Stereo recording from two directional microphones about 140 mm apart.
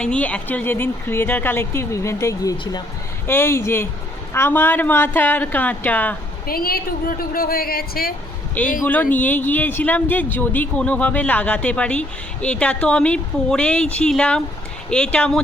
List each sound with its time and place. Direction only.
0.0 s speech: 10° left (ahead or behind)
6.4 s a woman's voice: 90° left
8.6 s speech: 10° left (ahead or behind)